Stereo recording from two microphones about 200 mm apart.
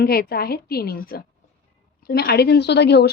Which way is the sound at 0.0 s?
50° left (ahead or behind).